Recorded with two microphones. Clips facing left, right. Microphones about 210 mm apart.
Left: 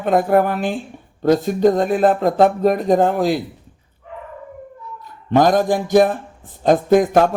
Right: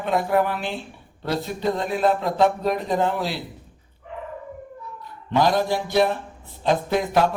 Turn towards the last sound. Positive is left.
turn(degrees=50)  # may be behind; listen again after turning